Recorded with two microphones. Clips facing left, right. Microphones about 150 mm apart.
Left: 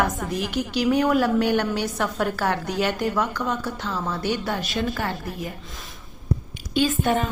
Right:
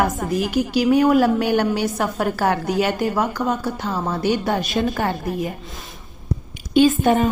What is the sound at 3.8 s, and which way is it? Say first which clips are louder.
Speech: right 4 dB; 45° right (ahead or behind).